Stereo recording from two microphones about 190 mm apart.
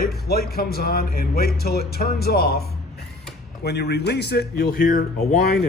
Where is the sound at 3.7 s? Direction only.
60° left (ahead or behind).